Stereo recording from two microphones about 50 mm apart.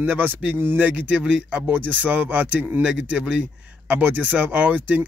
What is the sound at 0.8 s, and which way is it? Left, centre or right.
Speech, right.